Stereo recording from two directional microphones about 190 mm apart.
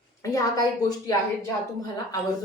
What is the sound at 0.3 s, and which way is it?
Speech, 20° left (ahead or behind).